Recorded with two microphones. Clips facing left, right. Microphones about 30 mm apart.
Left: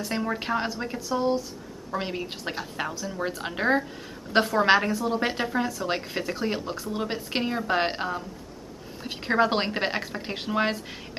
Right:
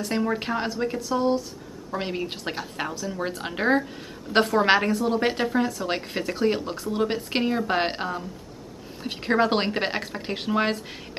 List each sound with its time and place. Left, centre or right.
0.0 s a woman's voice: centre